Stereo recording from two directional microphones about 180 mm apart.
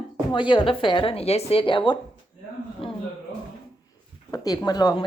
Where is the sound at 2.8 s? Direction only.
30° left (ahead or behind).